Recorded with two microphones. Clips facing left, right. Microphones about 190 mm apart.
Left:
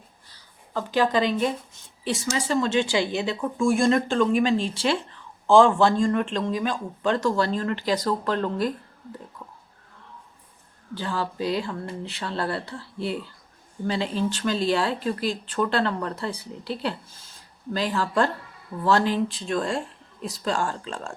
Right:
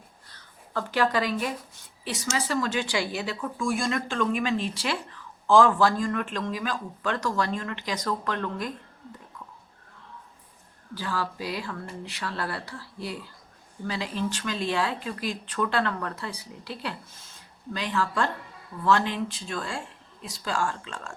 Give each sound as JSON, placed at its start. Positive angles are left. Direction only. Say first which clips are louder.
{"t": 0.3, "sound": "speech", "louder": "left 2 dB", "side_deg": 15}
{"t": 10.9, "sound": "speech", "louder": "left 3 dB", "side_deg": 25}